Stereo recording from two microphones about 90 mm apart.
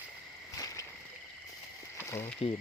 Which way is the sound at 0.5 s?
40° left (ahead or behind).